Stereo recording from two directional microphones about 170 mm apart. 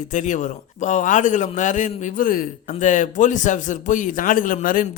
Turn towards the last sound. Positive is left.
turn(degrees=55)  # may be behind; listen again after turning